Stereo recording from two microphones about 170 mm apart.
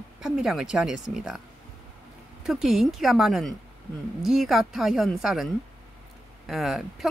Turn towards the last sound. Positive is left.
turn(degrees=0)  # may be behind; listen again after turning